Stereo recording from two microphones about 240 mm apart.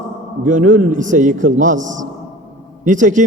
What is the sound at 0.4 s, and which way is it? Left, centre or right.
A man's voice, right.